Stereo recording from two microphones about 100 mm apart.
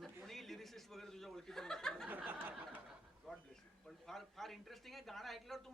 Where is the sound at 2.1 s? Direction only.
15° right (ahead or behind).